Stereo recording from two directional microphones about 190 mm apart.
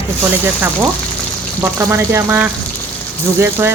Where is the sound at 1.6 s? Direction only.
15° right (ahead or behind).